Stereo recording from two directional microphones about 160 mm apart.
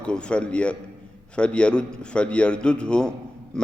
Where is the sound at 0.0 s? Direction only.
5° left (ahead or behind).